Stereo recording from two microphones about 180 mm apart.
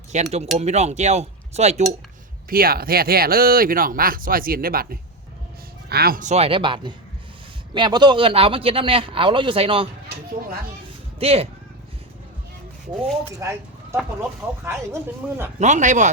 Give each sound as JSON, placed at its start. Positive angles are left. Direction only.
{"t": 0.1, "sound": "speech", "side_deg": -40}
{"t": 2.5, "sound": "speech", "side_deg": -55}
{"t": 11.2, "sound": "speech", "side_deg": -35}
{"t": 13.4, "sound": "speech", "side_deg": -15}
{"t": 14.6, "sound": "speech", "side_deg": -10}
{"t": 15.5, "sound": "speech", "side_deg": -40}